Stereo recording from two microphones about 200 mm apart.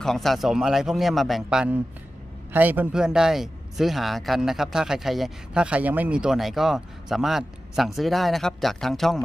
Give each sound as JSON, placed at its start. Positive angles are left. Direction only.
{"t": 0.0, "sound": "a man's voice", "side_deg": 0}